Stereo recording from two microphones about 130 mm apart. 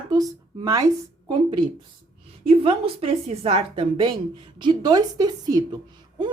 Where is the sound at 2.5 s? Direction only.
45° right (ahead or behind); by 5.7 s 30° right (ahead or behind).